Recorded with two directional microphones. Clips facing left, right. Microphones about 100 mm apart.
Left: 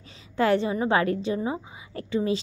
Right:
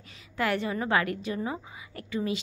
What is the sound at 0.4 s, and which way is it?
A woman's voice, 30° left (ahead or behind).